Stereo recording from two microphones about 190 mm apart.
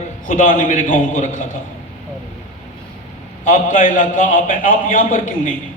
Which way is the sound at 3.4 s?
45° left (ahead or behind).